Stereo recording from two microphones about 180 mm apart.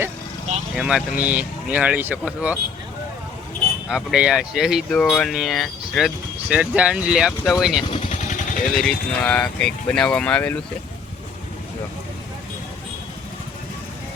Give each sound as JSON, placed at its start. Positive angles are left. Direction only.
{"t": 0.8, "sound": "speech", "side_deg": -5}
{"t": 3.8, "sound": "speech", "side_deg": -5}
{"t": 8.1, "sound": "vehicle", "side_deg": 45}
{"t": 8.7, "sound": "speech", "side_deg": 5}